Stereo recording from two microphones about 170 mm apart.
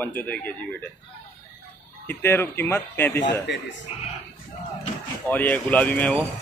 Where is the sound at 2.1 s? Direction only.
15° left (ahead or behind).